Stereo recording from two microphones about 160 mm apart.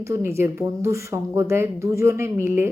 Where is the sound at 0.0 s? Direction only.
15° right (ahead or behind).